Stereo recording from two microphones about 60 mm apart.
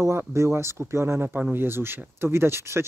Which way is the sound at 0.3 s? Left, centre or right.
Right.